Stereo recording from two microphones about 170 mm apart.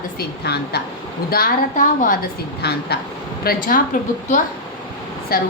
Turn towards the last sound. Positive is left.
turn(degrees=65)  # may be behind; listen again after turning